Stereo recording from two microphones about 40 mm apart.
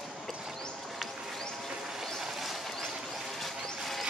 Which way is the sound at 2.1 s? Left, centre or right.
Centre.